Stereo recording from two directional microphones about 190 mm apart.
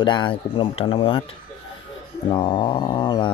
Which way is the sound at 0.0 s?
25° left (ahead or behind).